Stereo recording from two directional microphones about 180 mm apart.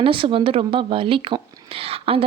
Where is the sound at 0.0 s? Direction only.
30° right (ahead or behind).